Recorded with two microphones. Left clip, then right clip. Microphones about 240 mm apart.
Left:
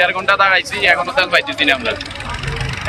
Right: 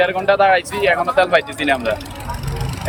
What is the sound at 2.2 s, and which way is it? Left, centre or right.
Vehicle, left.